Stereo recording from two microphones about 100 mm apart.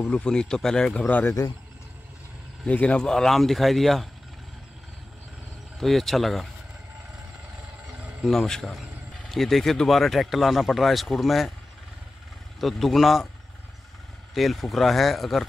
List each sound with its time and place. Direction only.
0.0 s speech: 10° left (ahead or behind)
1.0 s speech: 20° left (ahead or behind)
2.6 s speech: 10° left (ahead or behind)
5.8 s speech: centre (ahead or behind)
8.2 s speech: centre (ahead or behind)
12.5 s speech: centre (ahead or behind)
14.3 s speech: centre (ahead or behind)